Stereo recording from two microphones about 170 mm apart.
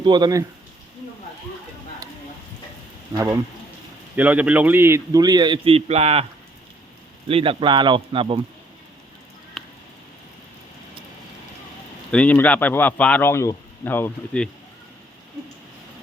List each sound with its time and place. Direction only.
0.0 s a man's voice: 25° right (ahead or behind)
4.1 s a man's voice: 10° right (ahead or behind); by 6.2 s 35° right (ahead or behind)
7.3 s a man's voice: 35° right (ahead or behind)
9.6 s a sound: centre (ahead or behind)
12.1 s speech: 10° left (ahead or behind)